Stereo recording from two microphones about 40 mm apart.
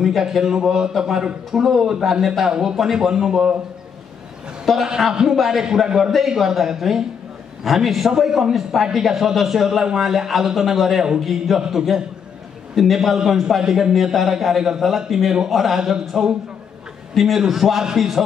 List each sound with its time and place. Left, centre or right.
0.0 s a man's voice: centre
0.4 s a man's voice: centre
4.7 s a man's voice: centre
5.3 s a man's voice: centre